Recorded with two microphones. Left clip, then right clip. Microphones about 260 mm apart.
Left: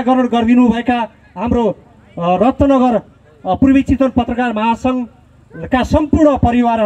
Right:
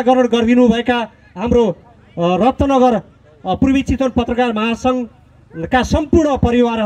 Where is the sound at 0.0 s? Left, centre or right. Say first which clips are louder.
Right 1 dB; right.